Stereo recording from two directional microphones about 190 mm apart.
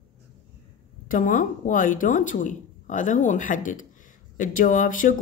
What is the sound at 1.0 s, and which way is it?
A woman's voice, 45° left (ahead or behind).